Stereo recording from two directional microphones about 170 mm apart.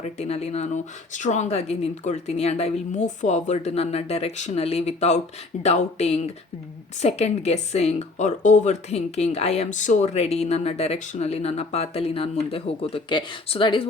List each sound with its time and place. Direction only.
0.0 s speech: 40° left (ahead or behind)